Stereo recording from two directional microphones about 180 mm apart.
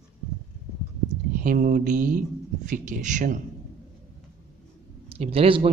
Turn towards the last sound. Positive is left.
turn(degrees=-30)  # may be behind; listen again after turning